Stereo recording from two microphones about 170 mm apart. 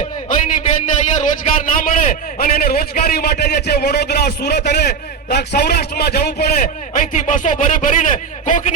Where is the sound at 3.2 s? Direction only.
65° left (ahead or behind).